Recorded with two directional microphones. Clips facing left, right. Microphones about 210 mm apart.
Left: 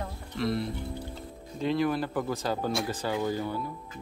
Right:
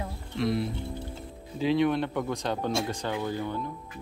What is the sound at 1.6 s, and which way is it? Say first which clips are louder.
Speech: right 3 dB; centre (ahead or behind).